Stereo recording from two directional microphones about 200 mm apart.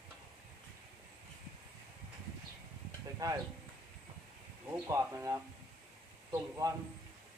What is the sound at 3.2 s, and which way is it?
Speech, 15° right (ahead or behind).